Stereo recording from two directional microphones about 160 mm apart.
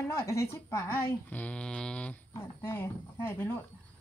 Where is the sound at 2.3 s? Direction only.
15° left (ahead or behind).